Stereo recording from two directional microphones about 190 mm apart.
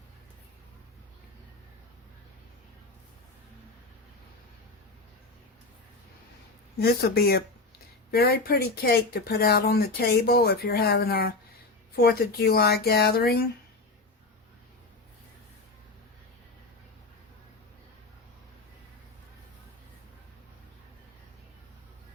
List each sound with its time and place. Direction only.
6.7 s speech: 55° left (ahead or behind)